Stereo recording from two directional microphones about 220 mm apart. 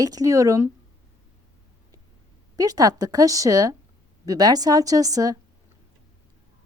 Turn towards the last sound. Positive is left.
turn(degrees=-15)  # may be behind; listen again after turning